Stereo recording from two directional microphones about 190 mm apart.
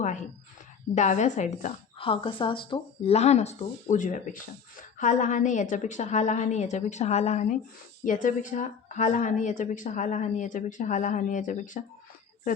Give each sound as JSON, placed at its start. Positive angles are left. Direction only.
{"t": 0.9, "sound": "a woman's voice", "side_deg": 40}